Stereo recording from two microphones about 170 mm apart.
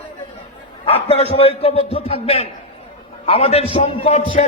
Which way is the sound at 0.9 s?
35° left (ahead or behind).